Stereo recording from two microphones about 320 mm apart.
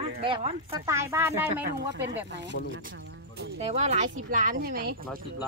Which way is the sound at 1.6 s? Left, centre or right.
Right.